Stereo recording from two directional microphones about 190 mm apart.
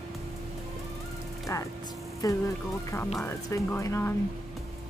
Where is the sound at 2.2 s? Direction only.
20° left (ahead or behind).